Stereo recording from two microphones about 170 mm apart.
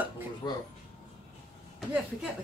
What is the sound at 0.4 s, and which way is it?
Speech, 25° left (ahead or behind).